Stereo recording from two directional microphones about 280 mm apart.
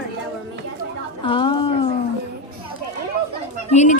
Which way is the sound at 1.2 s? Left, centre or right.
Centre.